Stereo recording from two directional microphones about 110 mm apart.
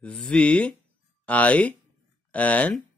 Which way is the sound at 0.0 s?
10° left (ahead or behind).